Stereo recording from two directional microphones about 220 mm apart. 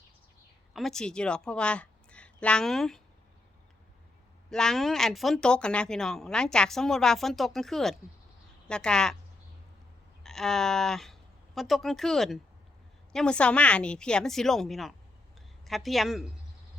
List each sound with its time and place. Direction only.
0.7 s a woman's voice: centre (ahead or behind)
4.4 s speech: centre (ahead or behind)
10.2 s speech: centre (ahead or behind)